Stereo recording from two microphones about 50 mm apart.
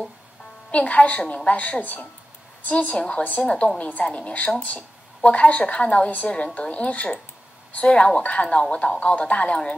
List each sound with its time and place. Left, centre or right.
0.7 s a woman's voice: left